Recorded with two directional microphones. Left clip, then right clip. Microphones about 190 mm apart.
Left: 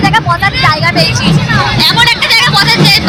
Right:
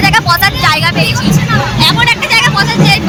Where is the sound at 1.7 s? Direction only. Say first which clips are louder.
Left 1 dB; 15° right (ahead or behind).